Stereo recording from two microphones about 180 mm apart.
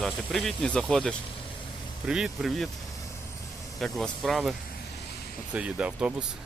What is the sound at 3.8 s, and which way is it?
Speech, centre (ahead or behind).